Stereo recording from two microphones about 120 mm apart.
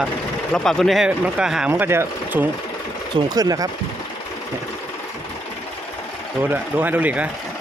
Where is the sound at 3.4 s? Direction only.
30° right (ahead or behind).